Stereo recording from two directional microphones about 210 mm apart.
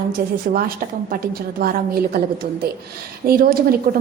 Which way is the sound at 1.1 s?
45° right (ahead or behind).